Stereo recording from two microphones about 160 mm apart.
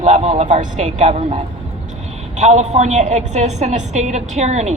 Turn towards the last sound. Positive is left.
turn(degrees=-45)  # may be behind; listen again after turning